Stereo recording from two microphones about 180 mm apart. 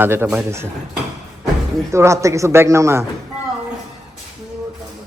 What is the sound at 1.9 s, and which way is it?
Speech, 15° right (ahead or behind).